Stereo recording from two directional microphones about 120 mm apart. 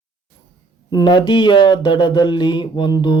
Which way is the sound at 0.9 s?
35° left (ahead or behind).